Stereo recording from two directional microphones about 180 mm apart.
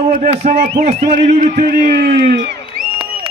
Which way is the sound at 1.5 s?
65° right (ahead or behind).